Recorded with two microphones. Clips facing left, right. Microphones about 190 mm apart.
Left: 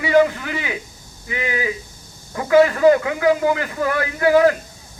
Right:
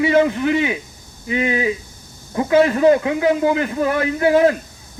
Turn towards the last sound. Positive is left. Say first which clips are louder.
# even
turn(degrees=-25)  # may be behind; listen again after turning